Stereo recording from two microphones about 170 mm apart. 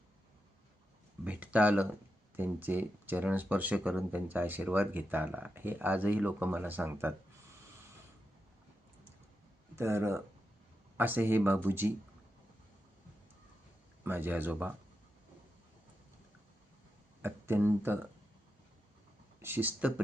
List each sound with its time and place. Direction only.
1.2 s speech: 10° right (ahead or behind)
9.7 s speech: 15° right (ahead or behind)
14.0 s speech: 10° right (ahead or behind)
17.2 s speech: 15° right (ahead or behind)
19.4 s speech: 10° right (ahead or behind)